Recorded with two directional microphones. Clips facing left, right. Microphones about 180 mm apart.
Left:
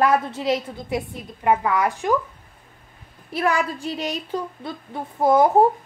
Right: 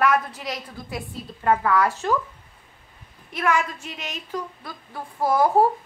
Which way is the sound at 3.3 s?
35° left (ahead or behind).